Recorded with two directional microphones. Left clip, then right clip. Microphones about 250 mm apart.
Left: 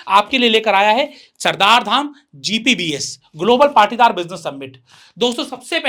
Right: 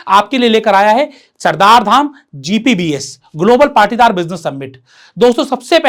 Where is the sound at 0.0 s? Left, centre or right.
Right.